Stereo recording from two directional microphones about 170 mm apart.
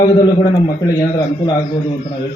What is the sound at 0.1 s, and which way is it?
A man's voice, 25° left (ahead or behind).